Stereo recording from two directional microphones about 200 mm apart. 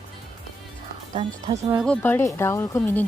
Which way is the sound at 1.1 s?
25° right (ahead or behind).